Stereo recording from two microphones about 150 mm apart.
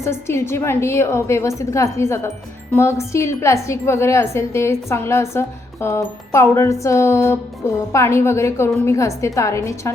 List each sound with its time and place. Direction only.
0.0 s a woman's voice: 15° left (ahead or behind)